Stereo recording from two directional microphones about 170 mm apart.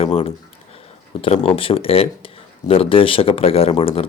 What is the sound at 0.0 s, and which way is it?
Speech, 35° left (ahead or behind).